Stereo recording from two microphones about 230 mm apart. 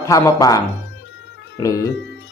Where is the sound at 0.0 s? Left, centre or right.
Centre.